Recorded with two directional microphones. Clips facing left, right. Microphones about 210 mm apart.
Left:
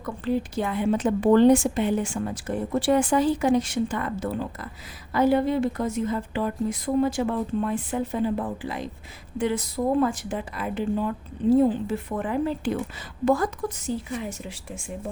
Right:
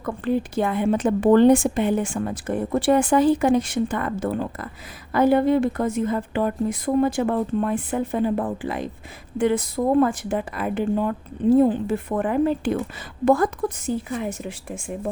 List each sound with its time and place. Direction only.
0.5 s a woman's voice: 55° right (ahead or behind)